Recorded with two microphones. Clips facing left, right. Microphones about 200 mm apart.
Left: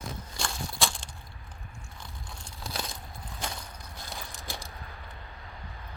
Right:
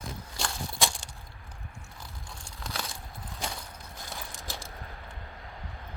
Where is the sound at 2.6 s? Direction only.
10° left (ahead or behind).